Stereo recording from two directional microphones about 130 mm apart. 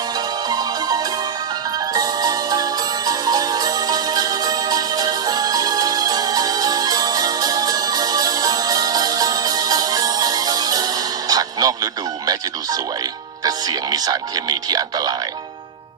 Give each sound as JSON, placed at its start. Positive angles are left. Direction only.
{"t": 0.4, "sound": "music", "side_deg": -30}